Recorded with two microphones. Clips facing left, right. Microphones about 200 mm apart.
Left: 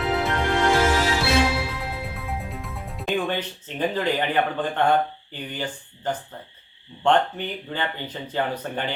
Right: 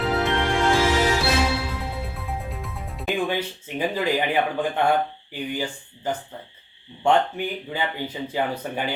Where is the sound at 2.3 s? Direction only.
Centre (ahead or behind).